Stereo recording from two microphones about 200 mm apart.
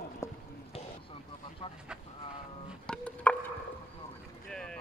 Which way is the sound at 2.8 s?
5° left (ahead or behind).